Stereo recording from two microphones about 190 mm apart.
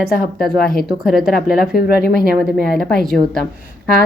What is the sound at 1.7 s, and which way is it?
Speech, 50° left (ahead or behind).